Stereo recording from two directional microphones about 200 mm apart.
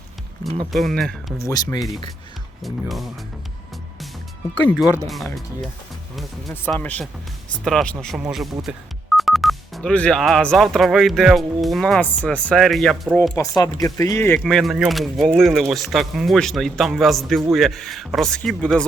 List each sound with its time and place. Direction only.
0.7 s speech: centre (ahead or behind)
1.4 s speech: 15° left (ahead or behind)
4.5 s speech: 5° left (ahead or behind)
6.5 s speech: 10° left (ahead or behind)
13.6 s speech: 15° left (ahead or behind)
14.4 s speech: centre (ahead or behind)